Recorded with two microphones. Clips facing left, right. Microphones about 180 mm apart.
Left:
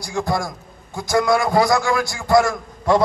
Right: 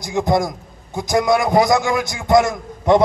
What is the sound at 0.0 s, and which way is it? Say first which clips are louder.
A man's voice: right 5 dB; 20° right (ahead or behind).